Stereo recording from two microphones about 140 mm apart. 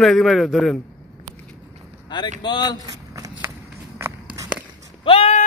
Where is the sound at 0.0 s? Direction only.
Centre (ahead or behind).